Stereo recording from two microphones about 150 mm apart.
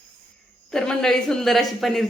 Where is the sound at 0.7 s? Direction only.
5° left (ahead or behind).